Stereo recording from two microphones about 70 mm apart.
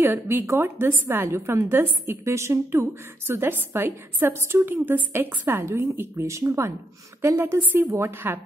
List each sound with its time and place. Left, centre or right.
0.0 s a woman's voice: right